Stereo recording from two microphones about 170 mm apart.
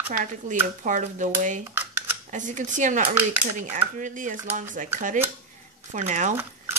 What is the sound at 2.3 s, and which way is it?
Speech, 50° right (ahead or behind).